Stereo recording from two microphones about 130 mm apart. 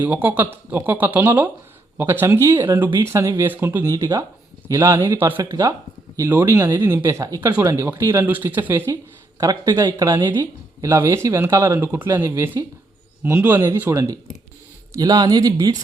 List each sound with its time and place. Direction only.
0.0 s speech: 15° right (ahead or behind)
9.4 s speech: 30° right (ahead or behind)